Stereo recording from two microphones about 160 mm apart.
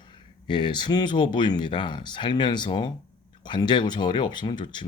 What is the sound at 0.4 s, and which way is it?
Speech, 30° left (ahead or behind).